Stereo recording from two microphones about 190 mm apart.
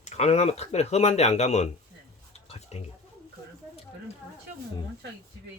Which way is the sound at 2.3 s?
35° left (ahead or behind).